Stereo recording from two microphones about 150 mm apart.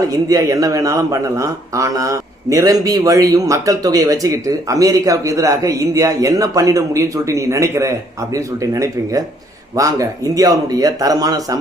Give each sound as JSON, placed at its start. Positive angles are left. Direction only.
{"t": 0.1, "sound": "a man's voice", "side_deg": -20}